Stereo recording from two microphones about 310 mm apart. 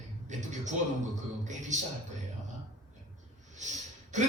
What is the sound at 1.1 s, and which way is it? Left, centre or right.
A man's voice, right.